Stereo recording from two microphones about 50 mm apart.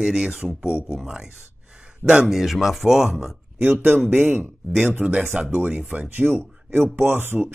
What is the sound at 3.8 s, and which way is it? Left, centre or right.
Speech, right.